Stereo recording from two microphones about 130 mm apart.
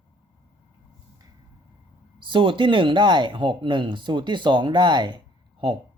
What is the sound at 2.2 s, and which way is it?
Speech, 40° right (ahead or behind).